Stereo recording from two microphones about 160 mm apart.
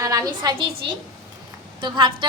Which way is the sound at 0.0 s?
20° right (ahead or behind).